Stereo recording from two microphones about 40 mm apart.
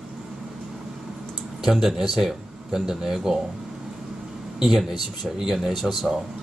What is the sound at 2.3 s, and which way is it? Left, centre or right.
Speech, centre.